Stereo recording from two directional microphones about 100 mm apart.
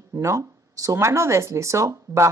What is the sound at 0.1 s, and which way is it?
Speech, 30° right (ahead or behind).